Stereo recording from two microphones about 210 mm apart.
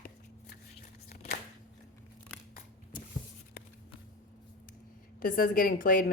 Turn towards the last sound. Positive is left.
turn(degrees=40)  # may be behind; listen again after turning